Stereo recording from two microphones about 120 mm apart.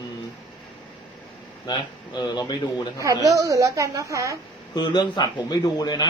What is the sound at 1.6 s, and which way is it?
Speech, 35° left (ahead or behind).